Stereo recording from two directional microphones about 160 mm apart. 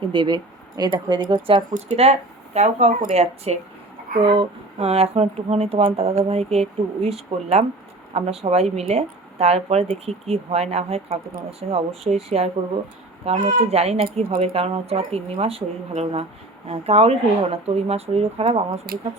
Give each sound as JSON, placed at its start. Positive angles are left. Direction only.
{"t": 0.1, "sound": "speech", "side_deg": -25}
{"t": 1.7, "sound": "speech", "side_deg": -45}
{"t": 8.1, "sound": "speech", "side_deg": -40}
{"t": 18.9, "sound": "speech", "side_deg": -70}